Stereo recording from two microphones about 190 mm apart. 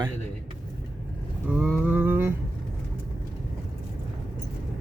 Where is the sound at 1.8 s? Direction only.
5° right (ahead or behind).